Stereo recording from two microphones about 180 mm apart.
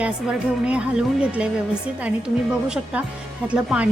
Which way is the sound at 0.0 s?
5° right (ahead or behind).